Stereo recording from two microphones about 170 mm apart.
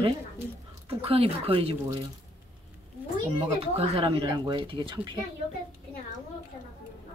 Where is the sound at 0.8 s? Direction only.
35° right (ahead or behind).